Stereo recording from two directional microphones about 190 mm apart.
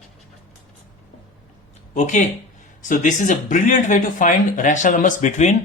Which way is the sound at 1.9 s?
40° left (ahead or behind).